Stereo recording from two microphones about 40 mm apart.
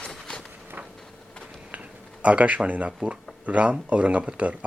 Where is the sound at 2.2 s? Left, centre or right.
Right.